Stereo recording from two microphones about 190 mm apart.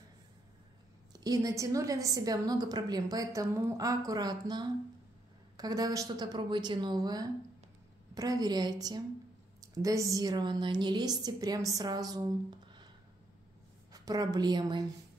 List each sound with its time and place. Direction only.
1.1 s a woman's voice: 20° right (ahead or behind)
13.9 s a woman's voice: 20° right (ahead or behind)